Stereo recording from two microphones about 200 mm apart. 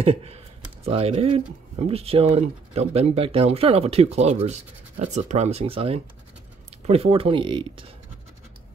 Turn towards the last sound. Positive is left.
turn(degrees=-25)  # may be behind; listen again after turning